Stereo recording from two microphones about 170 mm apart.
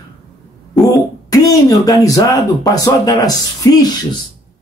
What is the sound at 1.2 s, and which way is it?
Speech, 20° left (ahead or behind).